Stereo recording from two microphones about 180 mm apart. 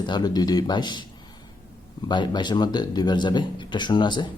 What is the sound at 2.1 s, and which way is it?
Speech, 25° left (ahead or behind).